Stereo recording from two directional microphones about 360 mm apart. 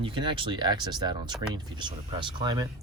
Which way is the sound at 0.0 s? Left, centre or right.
Centre.